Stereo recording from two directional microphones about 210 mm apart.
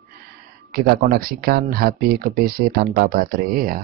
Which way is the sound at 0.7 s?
45° right (ahead or behind).